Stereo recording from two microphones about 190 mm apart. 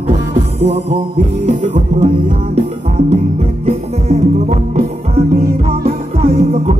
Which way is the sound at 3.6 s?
35° right (ahead or behind).